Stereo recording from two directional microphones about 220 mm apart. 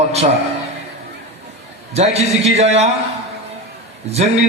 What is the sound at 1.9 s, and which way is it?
Speech, 30° right (ahead or behind).